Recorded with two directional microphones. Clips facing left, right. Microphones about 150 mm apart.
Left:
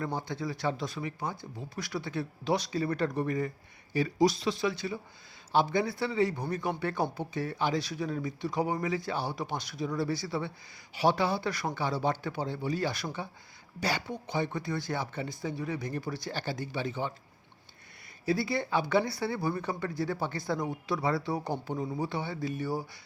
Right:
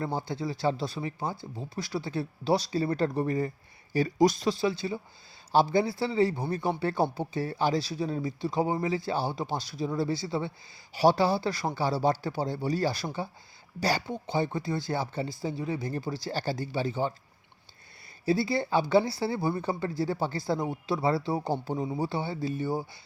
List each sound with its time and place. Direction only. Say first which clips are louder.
0.0 s speech: right 2 dB; 30° right (ahead or behind)
3.9 s speech: right 2 dB; 40° right (ahead or behind)
4.5 s speech: right 3 dB; 30° right (ahead or behind)
10.9 s speech: right 4 dB; 35° right (ahead or behind)
18.3 s speech: right 3 dB; 30° right (ahead or behind)